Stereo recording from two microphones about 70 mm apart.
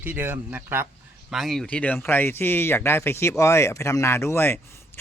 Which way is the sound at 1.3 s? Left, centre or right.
Centre.